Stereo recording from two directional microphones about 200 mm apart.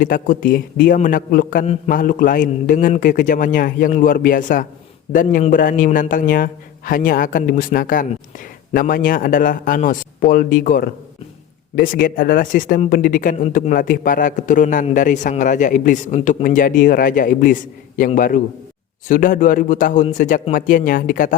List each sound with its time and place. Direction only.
0.0 s a man's voice: 45° left (ahead or behind)